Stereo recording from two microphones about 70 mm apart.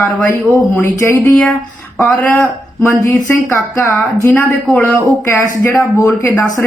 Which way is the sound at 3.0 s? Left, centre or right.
Left.